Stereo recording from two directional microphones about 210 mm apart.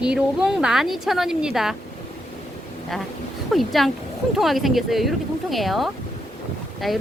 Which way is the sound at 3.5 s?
Centre (ahead or behind).